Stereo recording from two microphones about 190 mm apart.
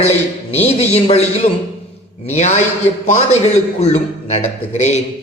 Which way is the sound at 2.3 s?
35° left (ahead or behind).